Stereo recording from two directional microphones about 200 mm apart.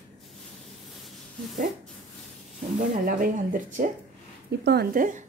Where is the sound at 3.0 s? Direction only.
45° right (ahead or behind).